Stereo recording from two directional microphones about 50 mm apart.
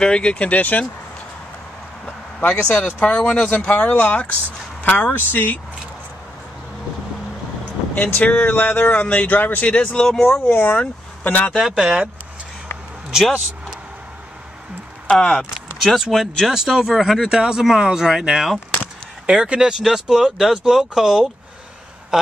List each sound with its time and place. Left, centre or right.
0.0 s speech: centre
2.0 s speech: left
3.4 s speech: left
7.9 s speech: left
8.5 s speech: left
10.0 s speech: centre
10.7 s speech: left
11.6 s speech: centre
15.0 s speech: centre
15.8 s speech: centre
16.4 s speech: centre
19.2 s speech: centre
22.1 s a sound: centre